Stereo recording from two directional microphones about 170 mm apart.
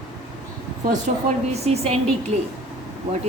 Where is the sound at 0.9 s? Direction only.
40° right (ahead or behind).